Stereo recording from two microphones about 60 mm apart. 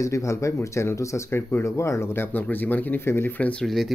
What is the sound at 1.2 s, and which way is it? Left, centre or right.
Speech, left.